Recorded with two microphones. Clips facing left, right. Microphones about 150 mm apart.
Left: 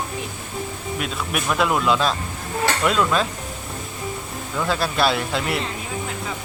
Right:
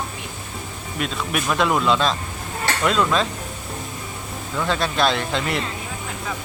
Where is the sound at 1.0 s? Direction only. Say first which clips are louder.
Right 3 dB; centre (ahead or behind).